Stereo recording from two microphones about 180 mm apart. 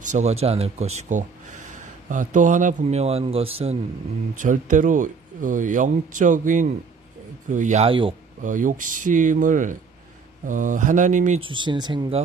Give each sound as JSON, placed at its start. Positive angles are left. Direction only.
{"t": 0.0, "sound": "speech", "side_deg": -40}
{"t": 4.4, "sound": "speech", "side_deg": -45}
{"t": 8.4, "sound": "speech", "side_deg": -45}
{"t": 11.4, "sound": "speech", "side_deg": -25}